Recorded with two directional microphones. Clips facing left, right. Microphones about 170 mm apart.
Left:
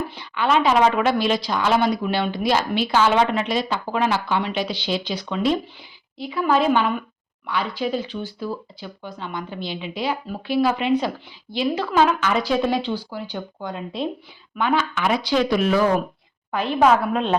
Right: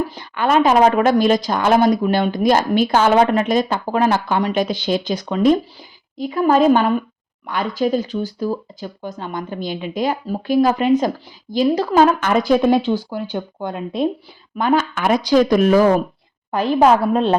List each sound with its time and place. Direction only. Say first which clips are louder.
0.1 s a woman's voice: right 3 dB; 45° right (ahead or behind)